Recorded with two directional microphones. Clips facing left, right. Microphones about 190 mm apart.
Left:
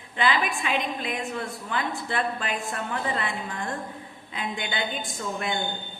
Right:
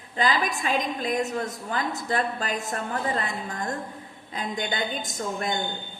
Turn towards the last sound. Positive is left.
turn(degrees=-40)  # may be behind; listen again after turning